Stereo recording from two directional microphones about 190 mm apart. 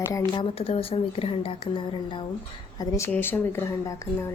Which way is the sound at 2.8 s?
15° left (ahead or behind).